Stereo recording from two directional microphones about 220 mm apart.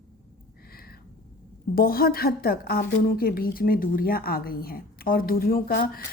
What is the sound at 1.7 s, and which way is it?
A woman's voice, 40° left (ahead or behind).